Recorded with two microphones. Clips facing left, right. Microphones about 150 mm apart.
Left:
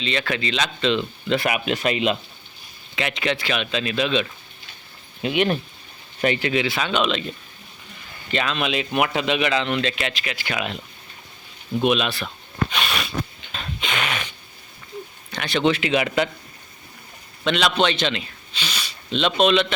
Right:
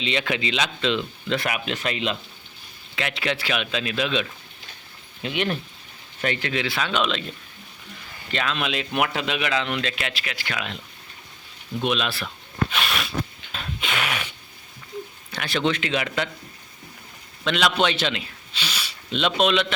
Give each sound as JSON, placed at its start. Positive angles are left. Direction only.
{"t": 0.0, "sound": "speech", "side_deg": -15}
{"t": 2.9, "sound": "speech", "side_deg": 0}
{"t": 5.2, "sound": "a man's voice", "side_deg": 15}
{"t": 8.3, "sound": "speech", "side_deg": 0}
{"t": 11.8, "sound": "speech", "side_deg": 5}
{"t": 12.7, "sound": "a sound", "side_deg": 0}
{"t": 15.3, "sound": "a man's voice", "side_deg": -5}
{"t": 17.4, "sound": "a man's voice", "side_deg": -5}